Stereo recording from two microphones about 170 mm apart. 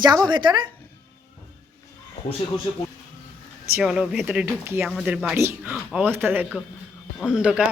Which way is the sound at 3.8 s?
Centre (ahead or behind).